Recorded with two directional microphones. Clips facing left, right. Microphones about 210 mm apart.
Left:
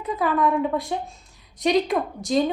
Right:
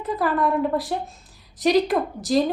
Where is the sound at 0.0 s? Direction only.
Centre (ahead or behind).